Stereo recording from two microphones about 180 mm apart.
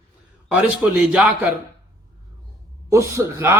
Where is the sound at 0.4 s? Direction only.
5° right (ahead or behind).